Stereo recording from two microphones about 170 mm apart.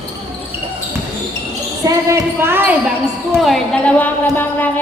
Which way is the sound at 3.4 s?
Centre (ahead or behind).